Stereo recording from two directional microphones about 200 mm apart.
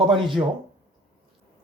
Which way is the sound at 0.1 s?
25° right (ahead or behind).